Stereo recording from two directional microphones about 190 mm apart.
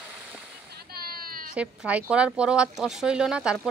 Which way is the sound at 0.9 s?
50° right (ahead or behind).